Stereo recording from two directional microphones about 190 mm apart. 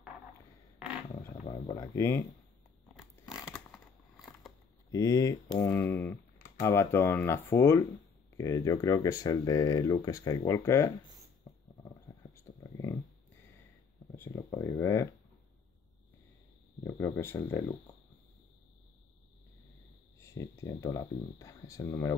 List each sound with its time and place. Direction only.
1.7 s speech: 15° left (ahead or behind)
2.9 s a sound: centre (ahead or behind)
4.9 s speech: 20° left (ahead or behind)
12.2 s a sound: 15° left (ahead or behind)
14.1 s speech: 15° left (ahead or behind)
16.8 s speech: 15° left (ahead or behind)
20.2 s speech: 15° left (ahead or behind)